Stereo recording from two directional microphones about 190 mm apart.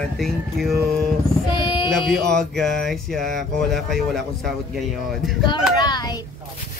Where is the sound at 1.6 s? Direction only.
25° left (ahead or behind).